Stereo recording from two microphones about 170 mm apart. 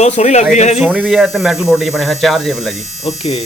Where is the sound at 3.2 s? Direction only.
40° left (ahead or behind).